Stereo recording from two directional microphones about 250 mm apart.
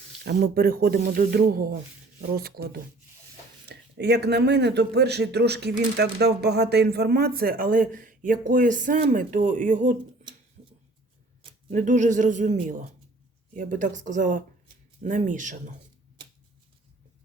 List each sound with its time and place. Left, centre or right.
0.3 s speech: right
11.7 s a woman's voice: right